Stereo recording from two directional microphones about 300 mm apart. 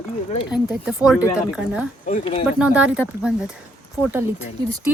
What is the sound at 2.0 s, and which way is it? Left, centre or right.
Speech, left.